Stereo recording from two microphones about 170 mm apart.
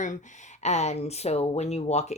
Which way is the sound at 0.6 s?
40° left (ahead or behind).